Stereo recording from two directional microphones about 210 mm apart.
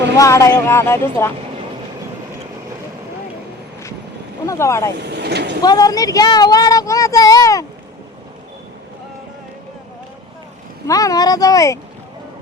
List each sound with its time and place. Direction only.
0.2 s speech: 15° left (ahead or behind)
4.4 s speech: 15° left (ahead or behind)
4.9 s speech: 50° right (ahead or behind)
5.6 s speech: 20° left (ahead or behind)
10.8 s speech: 15° left (ahead or behind)